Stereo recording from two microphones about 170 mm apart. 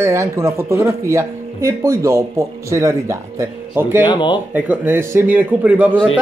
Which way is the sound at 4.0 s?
25° left (ahead or behind).